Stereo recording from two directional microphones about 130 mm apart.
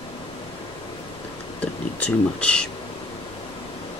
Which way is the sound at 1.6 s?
10° left (ahead or behind).